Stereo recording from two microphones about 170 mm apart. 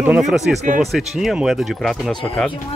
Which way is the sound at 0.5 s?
50° right (ahead or behind).